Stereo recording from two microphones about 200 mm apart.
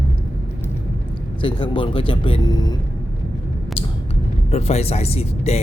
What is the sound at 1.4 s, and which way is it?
Speech, 25° left (ahead or behind).